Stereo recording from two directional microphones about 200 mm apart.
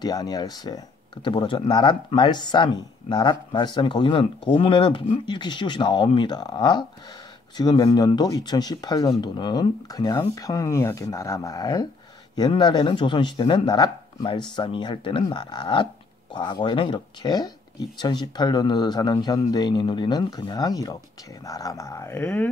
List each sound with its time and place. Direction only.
0.0 s speech: 20° left (ahead or behind)